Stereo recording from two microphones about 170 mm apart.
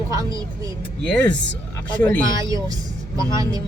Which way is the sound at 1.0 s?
10° left (ahead or behind).